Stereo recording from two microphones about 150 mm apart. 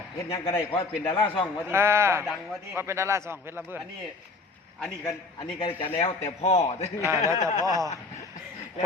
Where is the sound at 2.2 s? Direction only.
Centre (ahead or behind).